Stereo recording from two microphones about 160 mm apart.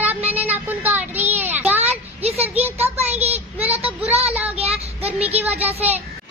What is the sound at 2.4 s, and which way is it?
Speech, 10° right (ahead or behind).